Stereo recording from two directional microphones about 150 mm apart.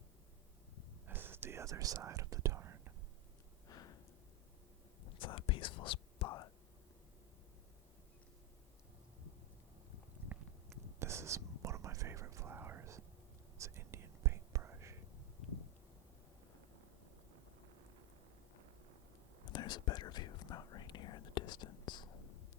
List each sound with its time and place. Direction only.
1.0 s whispering: 15° right (ahead or behind)
3.7 s a sound: 25° left (ahead or behind)
5.1 s whispering: 35° left (ahead or behind)
10.3 s a sound: 15° right (ahead or behind)
11.0 s whispering: 20° right (ahead or behind)
19.5 s whispering: 30° left (ahead or behind)